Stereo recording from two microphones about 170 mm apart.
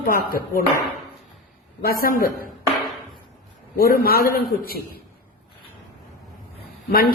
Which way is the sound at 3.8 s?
60° left (ahead or behind).